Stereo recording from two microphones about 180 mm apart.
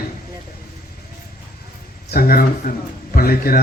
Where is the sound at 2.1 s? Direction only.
55° left (ahead or behind).